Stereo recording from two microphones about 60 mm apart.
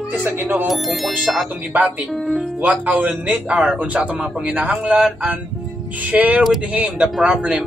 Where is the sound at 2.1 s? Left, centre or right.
Centre.